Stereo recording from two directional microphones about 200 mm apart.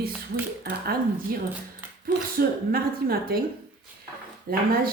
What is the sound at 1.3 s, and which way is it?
A woman's voice, 45° right (ahead or behind).